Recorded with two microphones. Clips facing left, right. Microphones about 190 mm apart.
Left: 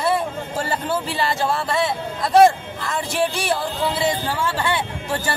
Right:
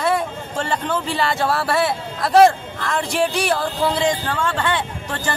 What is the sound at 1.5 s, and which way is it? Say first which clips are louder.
Speech: right 2 dB; 25° left (ahead or behind).